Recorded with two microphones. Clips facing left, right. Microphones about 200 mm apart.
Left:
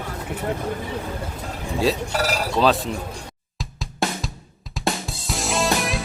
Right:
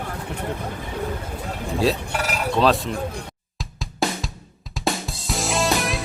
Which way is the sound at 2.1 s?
35° left (ahead or behind).